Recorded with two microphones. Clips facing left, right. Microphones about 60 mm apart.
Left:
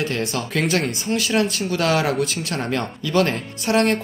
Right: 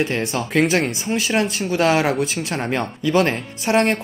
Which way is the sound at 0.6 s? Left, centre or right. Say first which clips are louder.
Right 4 dB; right.